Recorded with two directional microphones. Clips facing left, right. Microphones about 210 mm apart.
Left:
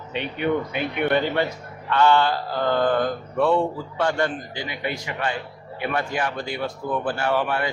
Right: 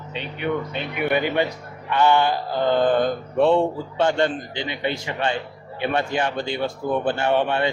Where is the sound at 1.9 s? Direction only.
15° right (ahead or behind).